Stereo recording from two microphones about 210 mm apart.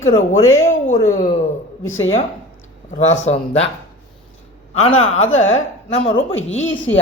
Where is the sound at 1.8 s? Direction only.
70° left (ahead or behind).